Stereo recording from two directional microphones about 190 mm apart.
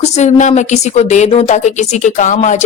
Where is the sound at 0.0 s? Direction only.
40° left (ahead or behind).